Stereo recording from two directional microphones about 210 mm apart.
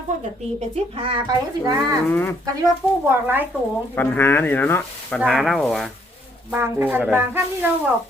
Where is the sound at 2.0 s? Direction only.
10° left (ahead or behind).